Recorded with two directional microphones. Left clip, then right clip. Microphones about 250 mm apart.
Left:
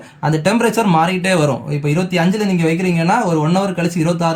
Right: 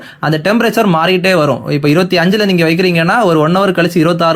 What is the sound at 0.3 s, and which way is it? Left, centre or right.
Speech, centre.